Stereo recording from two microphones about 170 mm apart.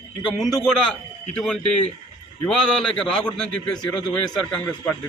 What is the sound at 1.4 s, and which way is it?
A man's voice, 5° left (ahead or behind).